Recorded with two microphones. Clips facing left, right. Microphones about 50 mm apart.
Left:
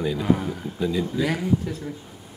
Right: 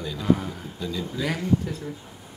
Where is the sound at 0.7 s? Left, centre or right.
Centre.